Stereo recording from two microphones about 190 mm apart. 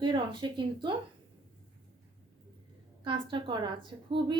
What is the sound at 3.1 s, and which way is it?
A woman's voice, 25° right (ahead or behind).